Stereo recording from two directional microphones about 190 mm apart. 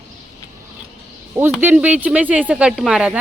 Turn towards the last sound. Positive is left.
turn(degrees=-5)  # may be behind; listen again after turning